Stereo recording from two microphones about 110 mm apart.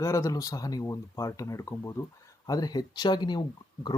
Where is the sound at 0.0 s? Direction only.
30° left (ahead or behind).